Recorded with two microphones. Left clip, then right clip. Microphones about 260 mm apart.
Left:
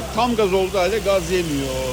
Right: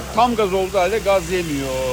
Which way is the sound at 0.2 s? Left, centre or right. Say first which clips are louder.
Right 2 dB; centre.